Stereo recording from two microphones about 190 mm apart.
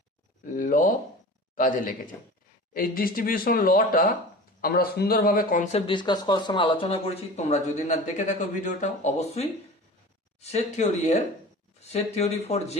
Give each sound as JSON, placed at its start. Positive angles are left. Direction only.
{"t": 0.4, "sound": "speech", "side_deg": 45}
{"t": 5.7, "sound": "speech", "side_deg": 25}